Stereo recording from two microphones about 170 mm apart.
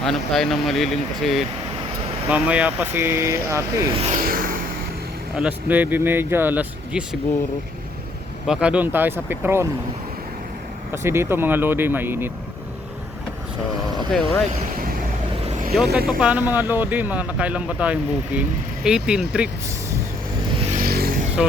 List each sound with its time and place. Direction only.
0.0 s speech: centre (ahead or behind); by 3.8 s 15° right (ahead or behind)
4.0 s a sound: 50° right (ahead or behind)
5.4 s speech: 10° right (ahead or behind)
8.4 s speech: 5° right (ahead or behind)
10.9 s speech: 15° right (ahead or behind)
14.1 s speech: 5° left (ahead or behind)
15.4 s vehicle: 45° right (ahead or behind)
16.0 s speech: 5° right (ahead or behind)
20.7 s vehicle: 55° right (ahead or behind)